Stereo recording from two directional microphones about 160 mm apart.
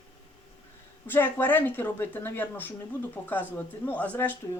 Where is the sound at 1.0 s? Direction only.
15° left (ahead or behind).